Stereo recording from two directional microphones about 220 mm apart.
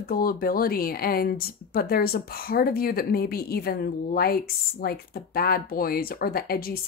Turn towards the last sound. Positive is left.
turn(degrees=45)  # may be behind; listen again after turning